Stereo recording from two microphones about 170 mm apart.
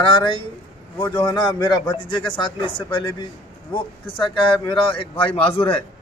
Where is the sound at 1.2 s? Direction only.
25° left (ahead or behind).